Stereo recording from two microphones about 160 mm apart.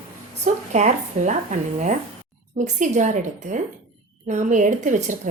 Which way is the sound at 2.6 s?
50° right (ahead or behind).